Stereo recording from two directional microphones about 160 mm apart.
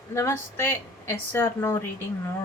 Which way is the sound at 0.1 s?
15° left (ahead or behind).